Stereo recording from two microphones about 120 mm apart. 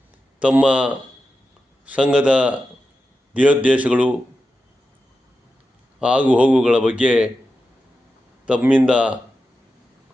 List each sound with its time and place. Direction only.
0.3 s speech: 10° right (ahead or behind)
6.0 s speech: 10° right (ahead or behind)
8.4 s speech: 10° right (ahead or behind)